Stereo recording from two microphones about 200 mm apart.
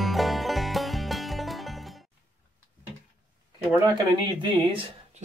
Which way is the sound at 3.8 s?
20° right (ahead or behind).